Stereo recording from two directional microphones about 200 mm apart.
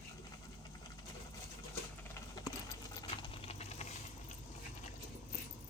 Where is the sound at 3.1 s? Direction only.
30° left (ahead or behind).